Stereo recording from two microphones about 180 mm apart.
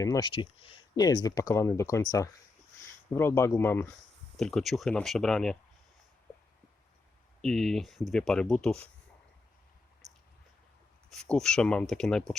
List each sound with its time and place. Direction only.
0.0 s speech: 20° left (ahead or behind)
4.4 s speech: centre (ahead or behind)
7.4 s speech: centre (ahead or behind)
11.1 s speech: 5° left (ahead or behind)